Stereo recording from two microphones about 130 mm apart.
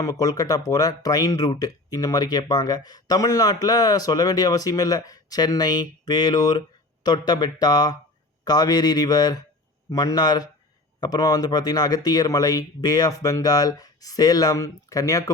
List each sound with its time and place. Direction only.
0.0 s speech: 30° left (ahead or behind)